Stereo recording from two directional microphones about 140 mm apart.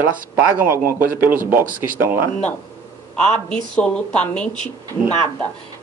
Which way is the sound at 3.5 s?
10° left (ahead or behind).